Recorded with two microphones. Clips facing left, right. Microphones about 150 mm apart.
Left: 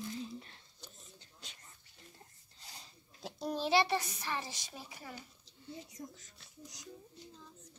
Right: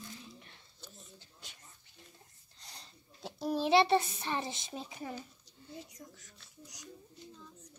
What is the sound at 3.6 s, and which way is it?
A child's voice, 25° right (ahead or behind).